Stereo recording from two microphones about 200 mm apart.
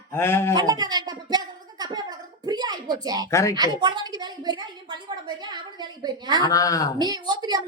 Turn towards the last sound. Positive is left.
turn(degrees=-20)  # may be behind; listen again after turning